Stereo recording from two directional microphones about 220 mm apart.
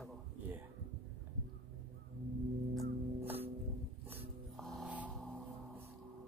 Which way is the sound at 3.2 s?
10° right (ahead or behind).